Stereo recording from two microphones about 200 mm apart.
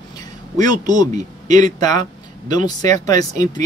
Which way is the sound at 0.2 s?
20° left (ahead or behind).